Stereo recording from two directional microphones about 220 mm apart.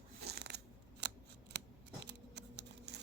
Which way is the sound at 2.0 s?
50° right (ahead or behind).